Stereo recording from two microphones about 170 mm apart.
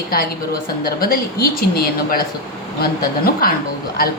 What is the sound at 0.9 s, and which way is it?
A woman's voice, 60° left (ahead or behind).